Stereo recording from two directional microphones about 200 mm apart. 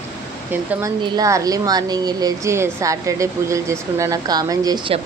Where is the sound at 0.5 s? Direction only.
10° right (ahead or behind).